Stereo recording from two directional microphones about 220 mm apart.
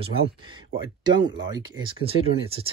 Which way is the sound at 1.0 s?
20° right (ahead or behind).